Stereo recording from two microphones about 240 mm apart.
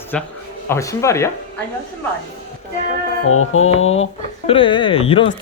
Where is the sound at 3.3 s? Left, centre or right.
Left.